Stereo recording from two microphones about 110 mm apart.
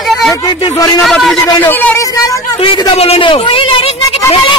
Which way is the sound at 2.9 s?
65° left (ahead or behind).